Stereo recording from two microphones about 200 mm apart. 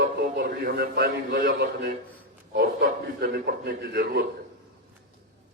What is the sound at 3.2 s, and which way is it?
A man's voice, 55° right (ahead or behind).